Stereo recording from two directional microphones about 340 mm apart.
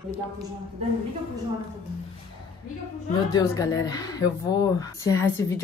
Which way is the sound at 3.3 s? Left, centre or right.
Centre.